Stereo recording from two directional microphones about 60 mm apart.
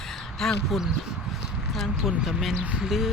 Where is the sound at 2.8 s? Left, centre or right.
Centre.